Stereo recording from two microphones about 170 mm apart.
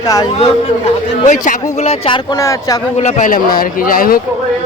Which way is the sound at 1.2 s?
50° left (ahead or behind).